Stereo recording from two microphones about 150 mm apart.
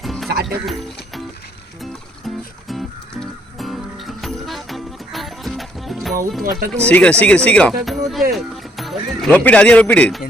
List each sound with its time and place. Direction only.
0.0 s music: centre (ahead or behind)
0.4 s speech: centre (ahead or behind)
1.8 s music: centre (ahead or behind)
6.4 s speech: 75° right (ahead or behind)
6.8 s speech: 10° left (ahead or behind)